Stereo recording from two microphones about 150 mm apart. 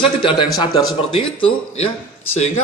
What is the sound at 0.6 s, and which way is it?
Speech, 30° left (ahead or behind).